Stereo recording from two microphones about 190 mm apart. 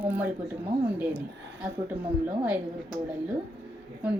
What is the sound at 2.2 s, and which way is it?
Speech, 10° right (ahead or behind).